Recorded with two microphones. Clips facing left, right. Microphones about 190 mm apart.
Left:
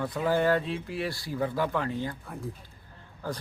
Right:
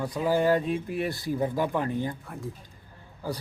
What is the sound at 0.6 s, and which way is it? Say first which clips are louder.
Speech: right 4 dB; 50° right (ahead or behind).